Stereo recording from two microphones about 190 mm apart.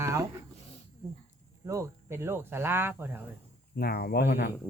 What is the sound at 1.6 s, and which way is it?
Speech, 15° right (ahead or behind).